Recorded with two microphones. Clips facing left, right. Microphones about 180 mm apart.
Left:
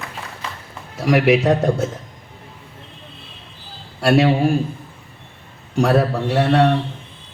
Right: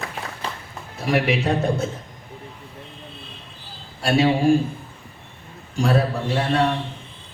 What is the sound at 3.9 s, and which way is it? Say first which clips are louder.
Speech: left 4 dB; 70° left (ahead or behind).